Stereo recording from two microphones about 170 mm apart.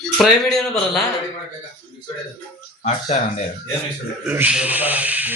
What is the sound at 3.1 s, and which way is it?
Speech, 40° left (ahead or behind).